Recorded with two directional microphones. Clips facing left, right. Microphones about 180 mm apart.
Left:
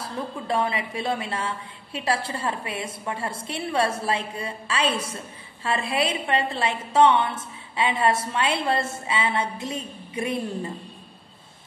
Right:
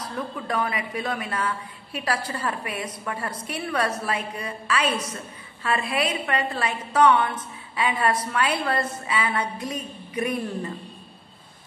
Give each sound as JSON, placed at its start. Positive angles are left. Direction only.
{"t": 0.0, "sound": "a woman's voice", "side_deg": 25}